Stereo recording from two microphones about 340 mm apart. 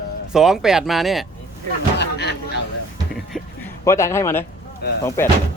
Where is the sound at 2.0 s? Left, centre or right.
Left.